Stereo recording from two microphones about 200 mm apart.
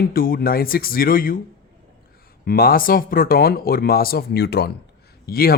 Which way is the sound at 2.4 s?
50° left (ahead or behind).